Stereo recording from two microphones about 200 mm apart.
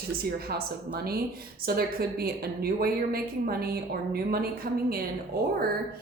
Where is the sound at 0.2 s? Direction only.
50° right (ahead or behind).